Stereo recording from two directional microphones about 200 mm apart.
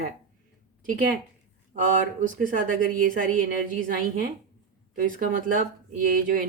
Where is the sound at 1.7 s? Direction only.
40° right (ahead or behind).